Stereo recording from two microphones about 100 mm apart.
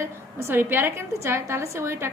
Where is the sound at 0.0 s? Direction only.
25° right (ahead or behind).